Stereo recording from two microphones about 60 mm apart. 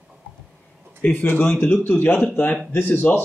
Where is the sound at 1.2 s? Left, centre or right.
Left.